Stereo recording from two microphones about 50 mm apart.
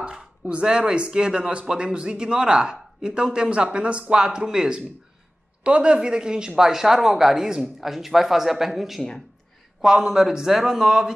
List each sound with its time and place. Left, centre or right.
0.0 s speech: centre